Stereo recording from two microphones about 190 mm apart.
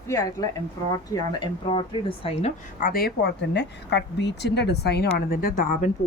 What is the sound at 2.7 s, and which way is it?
A woman's voice, 50° left (ahead or behind).